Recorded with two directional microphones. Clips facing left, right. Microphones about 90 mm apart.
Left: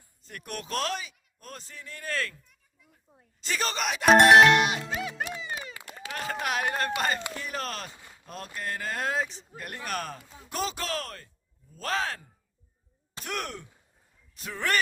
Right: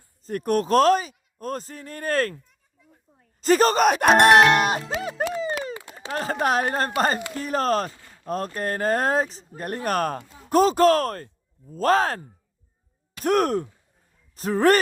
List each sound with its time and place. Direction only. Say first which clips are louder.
0.2 s speech: right 16 dB; 40° right (ahead or behind)
3.4 s speech: right 13 dB; 45° right (ahead or behind)
4.3 s music: right 2 dB; centre (ahead or behind)
4.5 s speech: right 3 dB; 45° right (ahead or behind)
5.3 s a sound: right 10 dB; 40° right (ahead or behind)
5.7 s speech: right 8 dB; 25° right (ahead or behind)
8.1 s a sound: right 16 dB; 45° right (ahead or behind)
8.5 s speech: right 8 dB; 45° right (ahead or behind)